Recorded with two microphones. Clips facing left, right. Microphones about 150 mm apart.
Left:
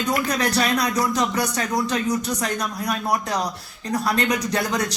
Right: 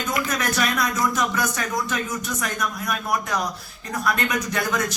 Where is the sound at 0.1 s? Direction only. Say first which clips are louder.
Left 3 dB; 35° left (ahead or behind).